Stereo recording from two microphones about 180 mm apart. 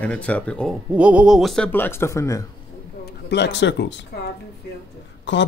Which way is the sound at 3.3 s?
70° left (ahead or behind).